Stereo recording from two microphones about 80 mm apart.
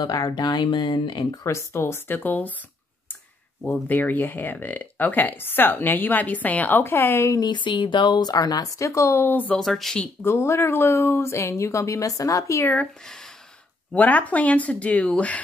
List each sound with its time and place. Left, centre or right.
0.0 s speech: left
1.4 s a woman's voice: left
3.8 s a woman's voice: left
7.3 s speech: left
9.2 s a woman's voice: left
9.6 s speech: centre
10.2 s a woman's voice: left
13.9 s speech: left